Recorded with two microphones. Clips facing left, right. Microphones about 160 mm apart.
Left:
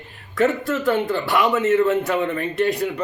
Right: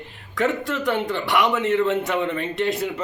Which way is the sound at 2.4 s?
20° right (ahead or behind).